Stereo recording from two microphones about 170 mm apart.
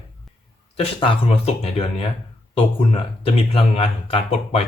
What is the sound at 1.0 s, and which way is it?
Speech, 35° left (ahead or behind).